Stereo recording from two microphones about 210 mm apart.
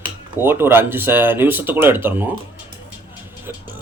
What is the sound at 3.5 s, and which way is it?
Music, 10° right (ahead or behind).